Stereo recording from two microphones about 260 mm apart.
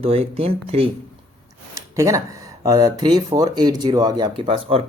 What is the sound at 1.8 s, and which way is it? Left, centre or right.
Speech, centre.